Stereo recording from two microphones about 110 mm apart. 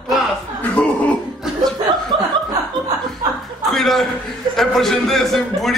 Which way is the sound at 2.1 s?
50° right (ahead or behind).